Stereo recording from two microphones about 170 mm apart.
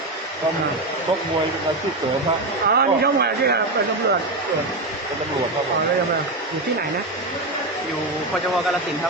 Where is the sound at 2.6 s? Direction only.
70° right (ahead or behind).